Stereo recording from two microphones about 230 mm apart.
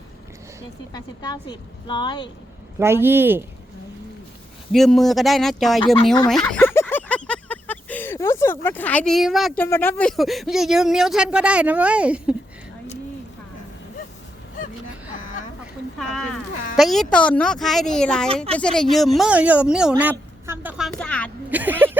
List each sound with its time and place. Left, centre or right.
0.9 s speech: centre
2.7 s speech: centre
4.7 s speech: centre
6.2 s a sound: centre
9.6 s speech: centre
16.0 s speech: centre
19.9 s a sound: centre
21.5 s vehicle: centre